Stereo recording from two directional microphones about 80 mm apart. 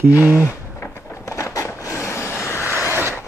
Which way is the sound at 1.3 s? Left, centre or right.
Left.